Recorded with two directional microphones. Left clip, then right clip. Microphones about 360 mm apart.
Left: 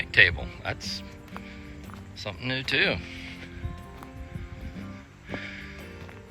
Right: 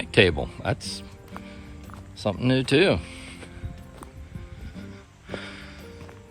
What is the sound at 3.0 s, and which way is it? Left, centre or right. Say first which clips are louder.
Music: even; centre.